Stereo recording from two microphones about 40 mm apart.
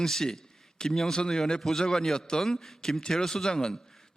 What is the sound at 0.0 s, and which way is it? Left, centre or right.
A man's voice, centre.